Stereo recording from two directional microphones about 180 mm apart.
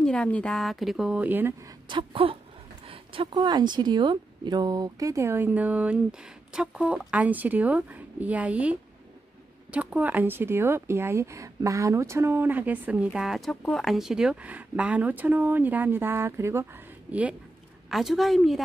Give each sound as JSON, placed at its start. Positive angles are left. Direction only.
{"t": 0.0, "sound": "speech", "side_deg": 5}
{"t": 1.9, "sound": "speech", "side_deg": -30}